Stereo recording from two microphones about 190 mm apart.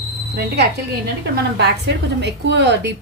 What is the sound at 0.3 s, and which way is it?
A woman's voice, 60° right (ahead or behind).